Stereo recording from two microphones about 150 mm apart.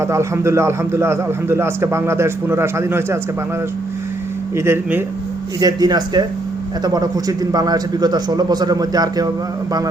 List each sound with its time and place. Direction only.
0.0 s a man's voice: 20° right (ahead or behind)
4.5 s a man's voice: 15° right (ahead or behind)
5.5 s a man's voice: 25° right (ahead or behind)